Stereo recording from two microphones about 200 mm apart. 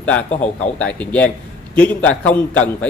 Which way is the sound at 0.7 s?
5° left (ahead or behind).